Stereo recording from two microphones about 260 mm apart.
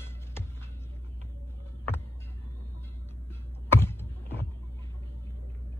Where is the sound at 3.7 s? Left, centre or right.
Centre.